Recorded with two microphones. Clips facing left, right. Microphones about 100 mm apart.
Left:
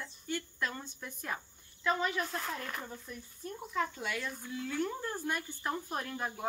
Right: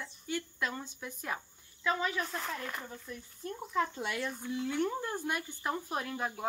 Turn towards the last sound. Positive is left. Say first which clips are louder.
# right 1 dB
turn(degrees=0)  # may be behind; listen again after turning